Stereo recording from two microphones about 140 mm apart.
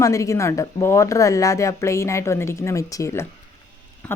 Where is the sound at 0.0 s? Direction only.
20° left (ahead or behind).